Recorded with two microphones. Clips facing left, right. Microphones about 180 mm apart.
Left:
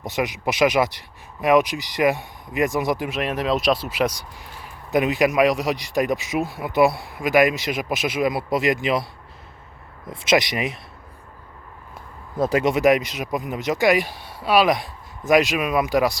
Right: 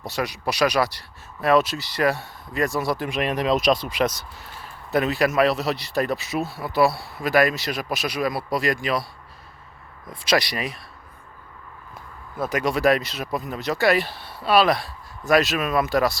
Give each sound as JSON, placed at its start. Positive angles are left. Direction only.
{"t": 0.0, "sound": "speech", "side_deg": 20}
{"t": 3.1, "sound": "speech", "side_deg": 0}
{"t": 10.1, "sound": "speech", "side_deg": 25}
{"t": 12.4, "sound": "speech", "side_deg": 30}